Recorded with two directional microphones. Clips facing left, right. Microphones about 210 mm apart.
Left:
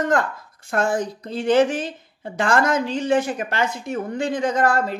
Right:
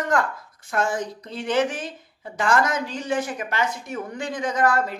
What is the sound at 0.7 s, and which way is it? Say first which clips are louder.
A woman's voice: left 3 dB; 35° left (ahead or behind).